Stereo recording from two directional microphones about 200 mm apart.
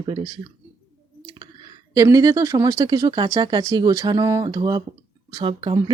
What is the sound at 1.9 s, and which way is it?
Speech, 15° right (ahead or behind).